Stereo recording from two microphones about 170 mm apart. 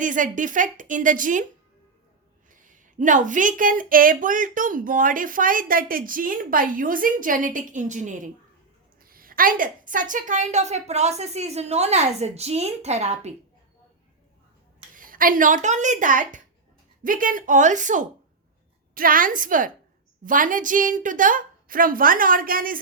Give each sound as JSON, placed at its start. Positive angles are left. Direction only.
{"t": 0.0, "sound": "speech", "side_deg": -50}
{"t": 2.5, "sound": "speech", "side_deg": -50}
{"t": 9.0, "sound": "a woman's voice", "side_deg": -60}
{"t": 14.9, "sound": "speech", "side_deg": -55}